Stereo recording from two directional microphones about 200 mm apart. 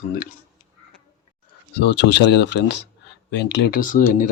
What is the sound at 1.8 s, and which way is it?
Speech, 60° left (ahead or behind).